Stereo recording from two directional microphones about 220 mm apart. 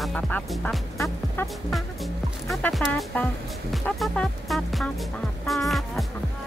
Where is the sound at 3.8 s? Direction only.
5° left (ahead or behind).